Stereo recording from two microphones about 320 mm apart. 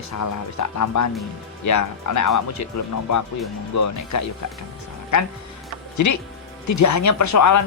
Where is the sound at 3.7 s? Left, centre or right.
Left.